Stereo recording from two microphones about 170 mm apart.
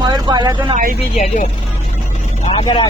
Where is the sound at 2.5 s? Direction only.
30° left (ahead or behind).